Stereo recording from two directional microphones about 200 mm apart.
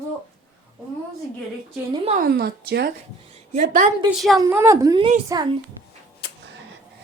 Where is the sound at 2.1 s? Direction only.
45° right (ahead or behind).